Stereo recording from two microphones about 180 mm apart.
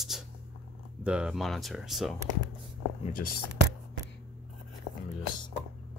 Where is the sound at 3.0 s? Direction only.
50° left (ahead or behind).